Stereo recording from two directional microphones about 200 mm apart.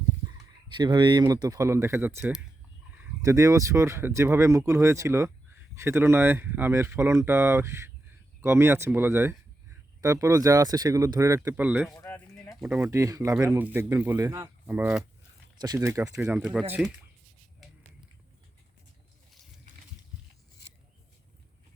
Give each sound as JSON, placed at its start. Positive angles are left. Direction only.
{"t": 0.3, "sound": "speech", "side_deg": -20}
{"t": 11.9, "sound": "a sound", "side_deg": 10}
{"t": 12.6, "sound": "speech", "side_deg": -10}